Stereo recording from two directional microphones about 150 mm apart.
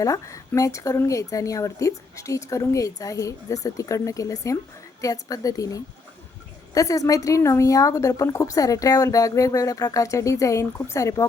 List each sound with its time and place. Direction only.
0.0 s speech: 20° left (ahead or behind)